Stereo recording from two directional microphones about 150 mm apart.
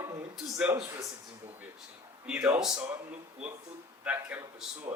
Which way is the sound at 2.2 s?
10° right (ahead or behind).